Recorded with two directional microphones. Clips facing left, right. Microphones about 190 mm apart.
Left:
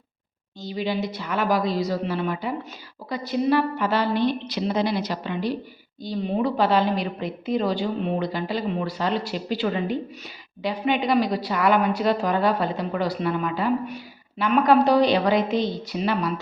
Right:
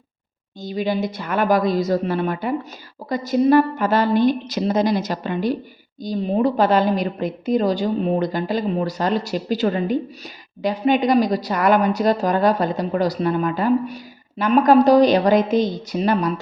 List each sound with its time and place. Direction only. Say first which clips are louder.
0.6 s a woman's voice: right 4 dB; 50° right (ahead or behind)